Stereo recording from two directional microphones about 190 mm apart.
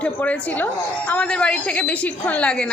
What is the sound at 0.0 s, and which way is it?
A woman's voice, 5° left (ahead or behind).